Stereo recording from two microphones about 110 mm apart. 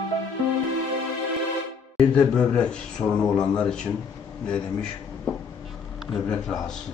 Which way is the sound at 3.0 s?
25° left (ahead or behind).